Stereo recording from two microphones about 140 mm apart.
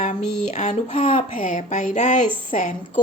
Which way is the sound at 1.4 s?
70° left (ahead or behind).